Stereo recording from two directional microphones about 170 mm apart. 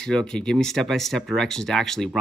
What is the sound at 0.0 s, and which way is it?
Speech, 5° left (ahead or behind).